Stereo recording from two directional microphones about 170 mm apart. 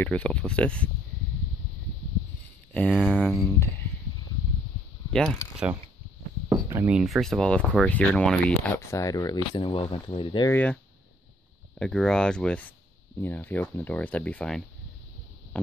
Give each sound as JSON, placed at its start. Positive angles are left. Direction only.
{"t": 0.0, "sound": "speech", "side_deg": 5}
{"t": 2.7, "sound": "speech", "side_deg": 5}
{"t": 5.1, "sound": "speech", "side_deg": 5}
{"t": 6.5, "sound": "speech", "side_deg": -15}
{"t": 7.0, "sound": "speech", "side_deg": 0}
{"t": 10.5, "sound": "speech", "side_deg": 10}
{"t": 11.8, "sound": "speech", "side_deg": 5}
{"t": 15.5, "sound": "stomach rumble", "side_deg": 10}